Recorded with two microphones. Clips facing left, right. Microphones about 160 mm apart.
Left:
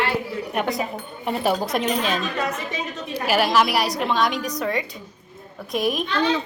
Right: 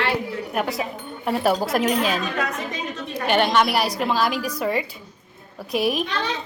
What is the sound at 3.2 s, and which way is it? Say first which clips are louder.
A woman's voice: even; 5° left (ahead or behind).